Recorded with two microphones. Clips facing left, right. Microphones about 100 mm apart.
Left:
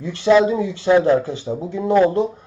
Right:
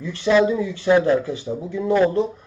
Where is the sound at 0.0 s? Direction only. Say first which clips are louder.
Left 3 dB; 20° left (ahead or behind).